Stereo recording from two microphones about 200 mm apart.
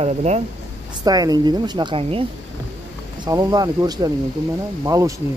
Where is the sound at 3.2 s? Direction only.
20° right (ahead or behind).